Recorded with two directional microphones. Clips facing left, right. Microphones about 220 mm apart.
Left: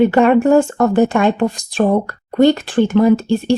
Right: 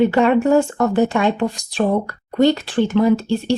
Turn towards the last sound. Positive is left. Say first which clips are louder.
# left 3 dB
turn(degrees=50)  # may be behind; listen again after turning